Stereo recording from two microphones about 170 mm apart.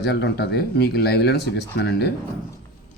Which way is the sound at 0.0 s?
80° left.